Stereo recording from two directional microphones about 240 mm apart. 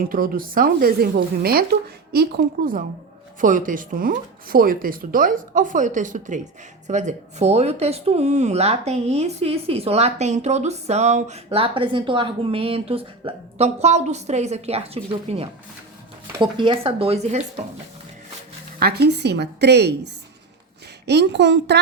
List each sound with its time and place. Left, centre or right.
0.0 s a woman's voice: right
18.8 s a woman's voice: right
21.1 s a woman's voice: right